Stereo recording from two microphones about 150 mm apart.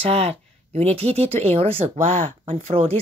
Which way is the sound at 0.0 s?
45° right (ahead or behind).